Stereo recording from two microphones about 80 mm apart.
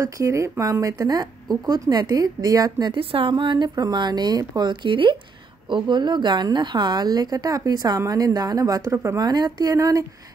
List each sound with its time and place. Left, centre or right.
0.0 s a woman's voice: right
2.9 s speech: right
5.7 s a woman's voice: right
8.9 s speech: right
9.2 s a woman's voice: right
9.8 s speech: right